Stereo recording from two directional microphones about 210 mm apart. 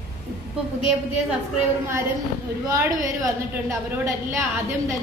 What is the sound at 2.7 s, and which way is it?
A woman's voice, 15° right (ahead or behind).